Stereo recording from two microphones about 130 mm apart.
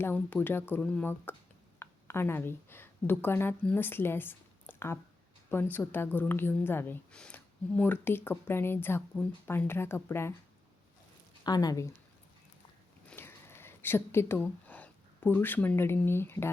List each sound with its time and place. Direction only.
0.0 s a woman's voice: 15° left (ahead or behind)
11.4 s speech: 30° left (ahead or behind)
13.1 s a sound: 15° left (ahead or behind)